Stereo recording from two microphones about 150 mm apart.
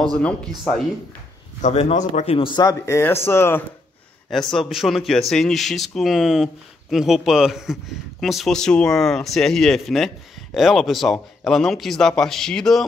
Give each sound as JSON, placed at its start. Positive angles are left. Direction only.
{"t": 1.6, "sound": "speech", "side_deg": 45}
{"t": 2.3, "sound": "speech", "side_deg": 35}
{"t": 4.3, "sound": "speech", "side_deg": 5}